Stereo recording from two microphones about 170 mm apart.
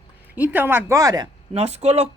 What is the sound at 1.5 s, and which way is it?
Speech, 35° right (ahead or behind).